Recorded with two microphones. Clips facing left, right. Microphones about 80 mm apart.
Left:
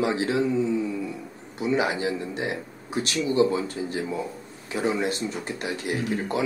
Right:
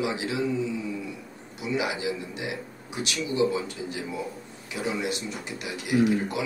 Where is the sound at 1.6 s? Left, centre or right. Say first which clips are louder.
Left 4 dB; left.